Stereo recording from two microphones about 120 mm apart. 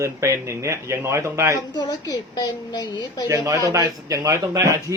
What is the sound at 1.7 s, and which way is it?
A woman's voice, 35° left (ahead or behind).